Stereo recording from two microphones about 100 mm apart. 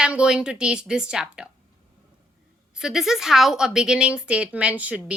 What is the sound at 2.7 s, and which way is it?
A woman's voice, 5° right (ahead or behind).